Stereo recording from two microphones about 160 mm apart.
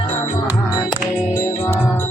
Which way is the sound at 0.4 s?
5° right (ahead or behind).